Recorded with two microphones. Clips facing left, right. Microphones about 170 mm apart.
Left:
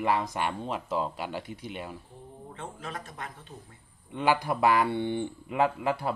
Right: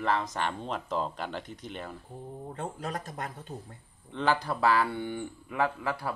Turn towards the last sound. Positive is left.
turn(degrees=20)  # may be behind; listen again after turning